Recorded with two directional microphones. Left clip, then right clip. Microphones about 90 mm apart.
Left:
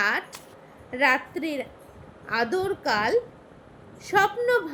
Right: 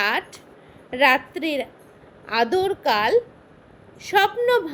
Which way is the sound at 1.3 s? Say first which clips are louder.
Right 4 dB; 30° left (ahead or behind).